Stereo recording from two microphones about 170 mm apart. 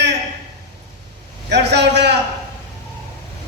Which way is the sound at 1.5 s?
90° right.